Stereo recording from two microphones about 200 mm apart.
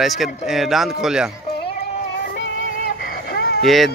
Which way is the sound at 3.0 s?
50° left (ahead or behind).